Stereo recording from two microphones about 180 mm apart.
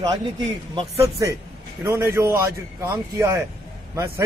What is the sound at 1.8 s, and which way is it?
A man's voice, 15° right (ahead or behind).